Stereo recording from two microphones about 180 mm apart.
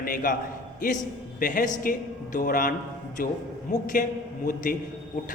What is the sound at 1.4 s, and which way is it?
A man's voice, 45° left (ahead or behind).